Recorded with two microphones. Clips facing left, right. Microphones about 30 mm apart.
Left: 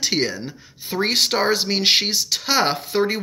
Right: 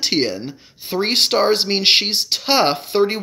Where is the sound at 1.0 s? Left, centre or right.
Right.